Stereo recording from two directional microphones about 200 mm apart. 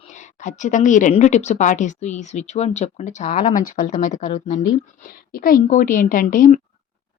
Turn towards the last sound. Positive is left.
turn(degrees=45)  # may be behind; listen again after turning